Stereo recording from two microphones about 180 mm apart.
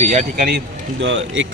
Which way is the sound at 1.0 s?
90° right.